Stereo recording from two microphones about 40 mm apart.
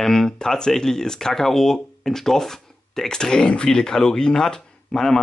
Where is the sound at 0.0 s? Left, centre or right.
Centre.